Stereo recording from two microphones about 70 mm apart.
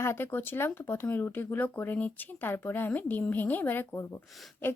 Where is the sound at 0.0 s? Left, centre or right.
Left.